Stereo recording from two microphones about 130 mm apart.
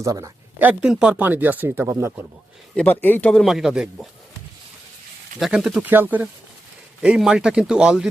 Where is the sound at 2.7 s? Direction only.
15° left (ahead or behind).